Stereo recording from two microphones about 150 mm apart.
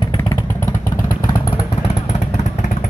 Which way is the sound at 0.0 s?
30° left (ahead or behind).